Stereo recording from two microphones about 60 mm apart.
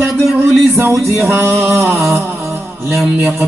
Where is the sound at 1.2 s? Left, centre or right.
Right.